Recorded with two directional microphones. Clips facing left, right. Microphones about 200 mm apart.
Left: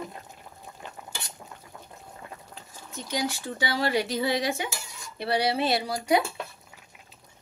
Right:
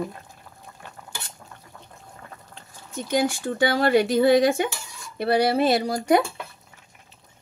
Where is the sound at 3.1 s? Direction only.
50° right (ahead or behind).